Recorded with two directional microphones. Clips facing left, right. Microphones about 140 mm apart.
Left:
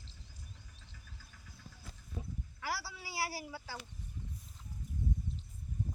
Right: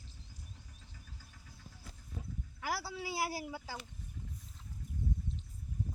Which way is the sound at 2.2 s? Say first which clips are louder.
Left 2 dB; centre (ahead or behind).